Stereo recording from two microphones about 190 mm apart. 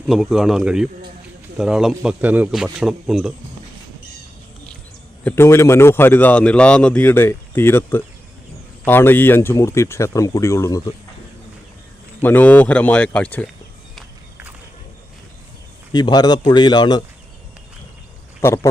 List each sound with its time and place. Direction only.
0.0 s speech: centre (ahead or behind)
5.2 s a man's voice: 15° left (ahead or behind)
12.2 s a man's voice: 10° left (ahead or behind)
15.9 s speech: 20° left (ahead or behind)
18.4 s a man's voice: 15° left (ahead or behind)